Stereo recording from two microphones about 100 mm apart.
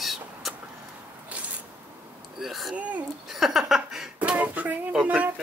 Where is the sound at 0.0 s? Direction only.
Centre (ahead or behind).